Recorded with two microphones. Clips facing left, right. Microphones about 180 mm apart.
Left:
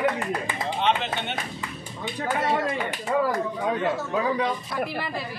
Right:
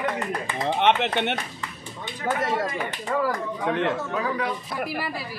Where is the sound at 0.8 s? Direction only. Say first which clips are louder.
Right 4 dB; 70° right (ahead or behind).